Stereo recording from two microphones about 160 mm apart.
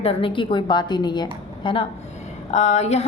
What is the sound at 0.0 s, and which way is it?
A woman's voice, 35° left (ahead or behind).